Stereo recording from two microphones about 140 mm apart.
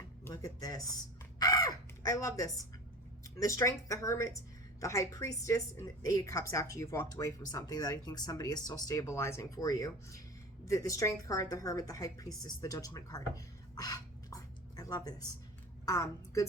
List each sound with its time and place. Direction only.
0.3 s music: 25° left (ahead or behind)
1.4 s crow: 25° left (ahead or behind)
3.2 s a woman's voice: 20° left (ahead or behind)